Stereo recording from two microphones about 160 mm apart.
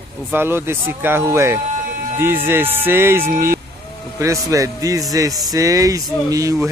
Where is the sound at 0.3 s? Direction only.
15° right (ahead or behind).